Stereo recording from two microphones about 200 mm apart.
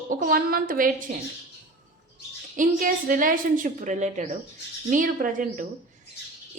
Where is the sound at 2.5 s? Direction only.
40° right (ahead or behind).